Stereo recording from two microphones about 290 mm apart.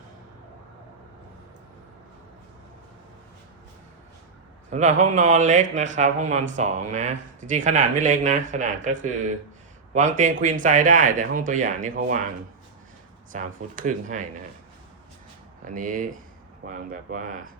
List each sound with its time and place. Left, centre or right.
4.7 s speech: right
13.3 s speech: right
15.6 s speech: right